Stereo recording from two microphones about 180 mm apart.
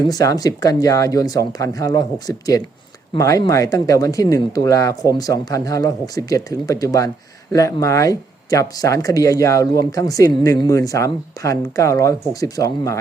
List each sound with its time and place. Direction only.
0.0 s speech: 20° left (ahead or behind)